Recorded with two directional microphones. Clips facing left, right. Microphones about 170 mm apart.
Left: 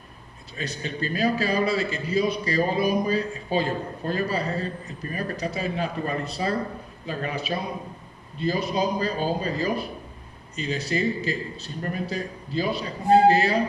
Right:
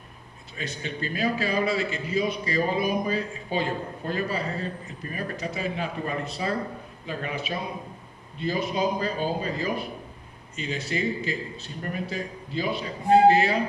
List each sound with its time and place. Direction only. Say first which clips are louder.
0.5 s a man's voice: left 2 dB; 40° left (ahead or behind)